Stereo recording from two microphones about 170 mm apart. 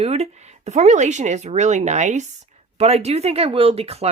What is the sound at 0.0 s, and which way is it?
A woman's voice, 40° right (ahead or behind).